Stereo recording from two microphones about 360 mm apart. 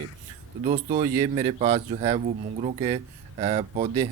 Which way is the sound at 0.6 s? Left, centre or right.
Centre.